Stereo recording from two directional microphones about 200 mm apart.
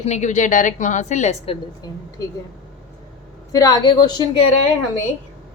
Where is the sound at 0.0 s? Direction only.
35° left (ahead or behind).